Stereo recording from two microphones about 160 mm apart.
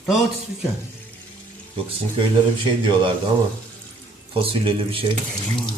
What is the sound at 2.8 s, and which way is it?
Speech, 30° right (ahead or behind).